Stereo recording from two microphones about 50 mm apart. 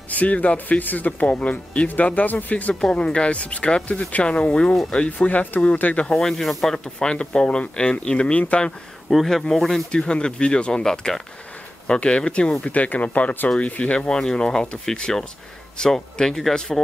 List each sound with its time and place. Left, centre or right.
0.1 s speech: left
2.7 s speech: centre; by 5.7 s left
5.9 s speech: centre
6.8 s speech: centre
9.1 s speech: centre
9.8 s speech: centre
11.9 s speech: left
14.0 s speech: centre